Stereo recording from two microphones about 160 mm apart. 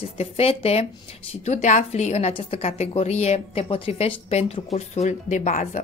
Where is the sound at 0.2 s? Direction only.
40° left (ahead or behind).